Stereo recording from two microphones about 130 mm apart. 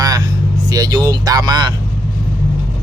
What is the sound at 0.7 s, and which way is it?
Speech, 30° right (ahead or behind).